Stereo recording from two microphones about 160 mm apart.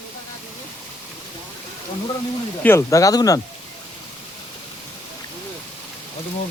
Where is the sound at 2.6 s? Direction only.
15° left (ahead or behind).